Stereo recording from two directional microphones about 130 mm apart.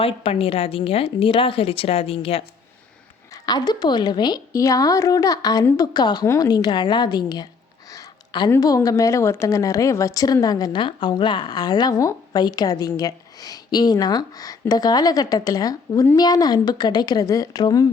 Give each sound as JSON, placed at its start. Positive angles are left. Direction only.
{"t": 0.0, "sound": "a woman's voice", "side_deg": 45}
{"t": 3.4, "sound": "a woman's voice", "side_deg": 30}
{"t": 7.9, "sound": "a sound", "side_deg": 35}
{"t": 8.4, "sound": "a woman's voice", "side_deg": 25}